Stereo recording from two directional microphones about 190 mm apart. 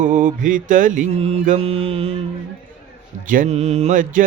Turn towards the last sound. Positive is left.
turn(degrees=-45)  # may be behind; listen again after turning